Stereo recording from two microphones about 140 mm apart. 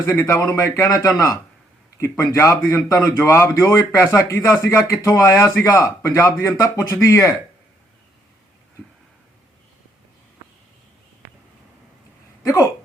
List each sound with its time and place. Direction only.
0.0 s a man's voice: 20° left (ahead or behind)
12.5 s a man's voice: 25° left (ahead or behind)